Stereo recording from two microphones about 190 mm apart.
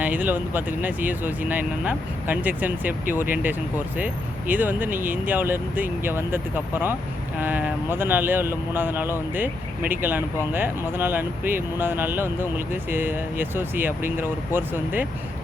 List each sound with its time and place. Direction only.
0.0 s speech: 10° right (ahead or behind)